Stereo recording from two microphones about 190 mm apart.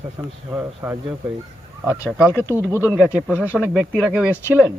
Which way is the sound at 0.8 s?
10° right (ahead or behind).